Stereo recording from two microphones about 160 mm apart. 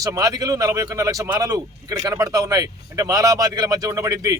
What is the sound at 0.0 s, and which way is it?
Speech, 20° right (ahead or behind).